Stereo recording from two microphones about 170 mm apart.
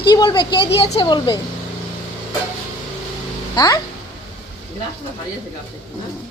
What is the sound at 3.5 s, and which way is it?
Speech, 20° left (ahead or behind).